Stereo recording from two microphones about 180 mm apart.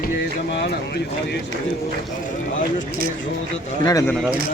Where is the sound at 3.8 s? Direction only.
20° left (ahead or behind).